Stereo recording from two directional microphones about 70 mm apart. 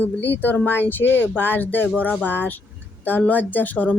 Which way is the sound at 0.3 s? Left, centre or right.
Left.